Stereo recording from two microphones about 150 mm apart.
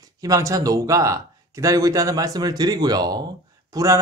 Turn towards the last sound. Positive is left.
turn(degrees=-20)  # may be behind; listen again after turning